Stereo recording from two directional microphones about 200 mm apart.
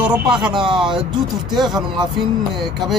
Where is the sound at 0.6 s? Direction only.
25° right (ahead or behind).